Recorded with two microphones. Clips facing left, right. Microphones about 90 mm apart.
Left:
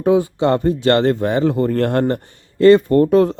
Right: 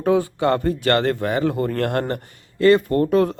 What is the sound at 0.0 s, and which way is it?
Speech, 20° left (ahead or behind).